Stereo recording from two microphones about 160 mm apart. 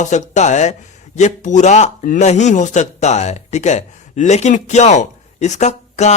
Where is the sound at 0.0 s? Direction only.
50° left (ahead or behind).